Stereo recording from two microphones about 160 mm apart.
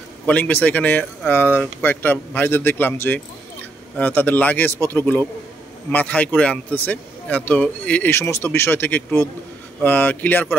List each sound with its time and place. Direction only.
0.3 s speech: 10° left (ahead or behind)